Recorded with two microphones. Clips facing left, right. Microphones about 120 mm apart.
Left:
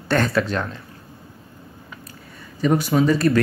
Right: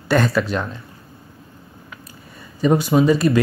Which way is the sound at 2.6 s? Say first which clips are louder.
Right 2 dB; 20° right (ahead or behind).